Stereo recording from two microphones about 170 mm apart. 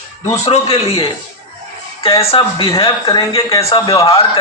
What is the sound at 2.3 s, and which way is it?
A man's voice, 30° left (ahead or behind).